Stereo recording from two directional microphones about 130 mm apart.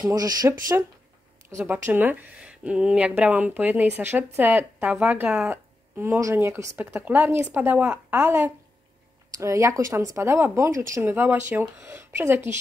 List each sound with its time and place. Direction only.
0.0 s speech: 30° right (ahead or behind)
1.7 s speech: 15° right (ahead or behind)